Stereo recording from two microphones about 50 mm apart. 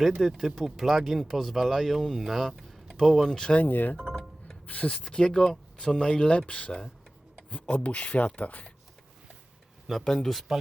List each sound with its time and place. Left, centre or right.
0.2 s speech: centre
3.2 s speech: centre
3.6 s speech: left
3.9 s a sound: centre
4.6 s speech: left
4.9 s speech: centre
8.4 s speech: left
10.0 s speech: centre